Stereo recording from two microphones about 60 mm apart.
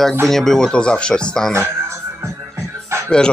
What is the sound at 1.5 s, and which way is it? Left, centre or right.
Music, right.